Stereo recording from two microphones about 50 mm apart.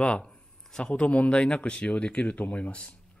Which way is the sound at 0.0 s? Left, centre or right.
Left.